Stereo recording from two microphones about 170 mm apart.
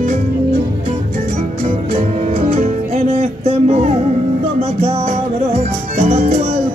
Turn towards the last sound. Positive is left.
turn(degrees=-40)  # may be behind; listen again after turning